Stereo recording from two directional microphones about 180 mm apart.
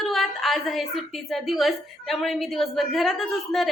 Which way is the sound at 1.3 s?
Centre (ahead or behind).